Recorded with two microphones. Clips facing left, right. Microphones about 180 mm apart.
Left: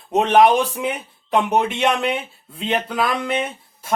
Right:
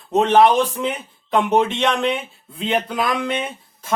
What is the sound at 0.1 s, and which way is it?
A man's voice, 15° left (ahead or behind).